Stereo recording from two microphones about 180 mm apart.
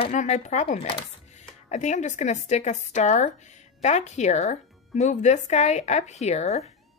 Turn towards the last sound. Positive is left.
turn(degrees=40)  # may be behind; listen again after turning